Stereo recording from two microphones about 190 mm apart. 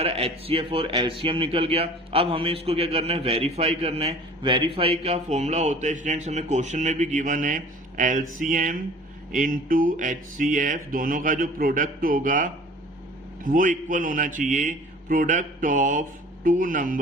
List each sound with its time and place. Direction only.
0.0 s a man's voice: 30° right (ahead or behind)
8.4 s music: 45° right (ahead or behind)